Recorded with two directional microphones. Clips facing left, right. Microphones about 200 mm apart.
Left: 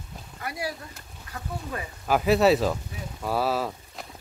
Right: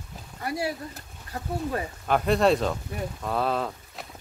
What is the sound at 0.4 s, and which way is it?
Speech, 30° right (ahead or behind).